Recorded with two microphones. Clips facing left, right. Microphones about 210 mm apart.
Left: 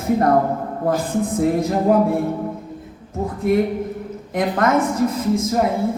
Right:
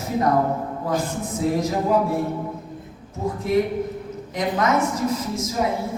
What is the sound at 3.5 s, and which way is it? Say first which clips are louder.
A woman's voice: left 3 dB; 55° left (ahead or behind).